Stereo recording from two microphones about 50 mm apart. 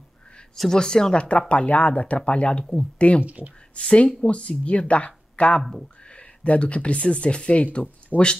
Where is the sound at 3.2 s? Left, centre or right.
Right.